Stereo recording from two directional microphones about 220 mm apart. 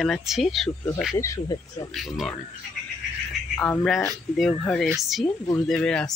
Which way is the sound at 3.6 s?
5° left (ahead or behind).